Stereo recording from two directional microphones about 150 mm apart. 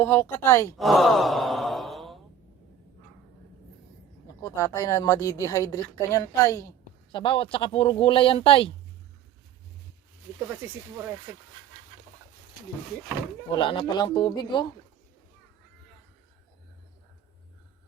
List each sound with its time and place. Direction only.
0.0 s speech: 15° left (ahead or behind)
0.8 s sigh: centre (ahead or behind)
4.4 s speech: 20° left (ahead or behind)
7.1 s speech: 35° left (ahead or behind)
10.5 s speech: 15° right (ahead or behind)
13.5 s speech: 35° left (ahead or behind)